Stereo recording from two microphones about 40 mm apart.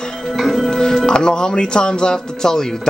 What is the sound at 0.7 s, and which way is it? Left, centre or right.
Speech, centre.